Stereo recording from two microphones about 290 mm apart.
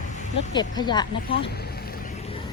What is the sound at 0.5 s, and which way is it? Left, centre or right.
Speech, centre.